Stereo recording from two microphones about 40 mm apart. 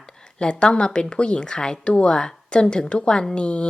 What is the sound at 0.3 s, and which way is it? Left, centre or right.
A woman's voice, left.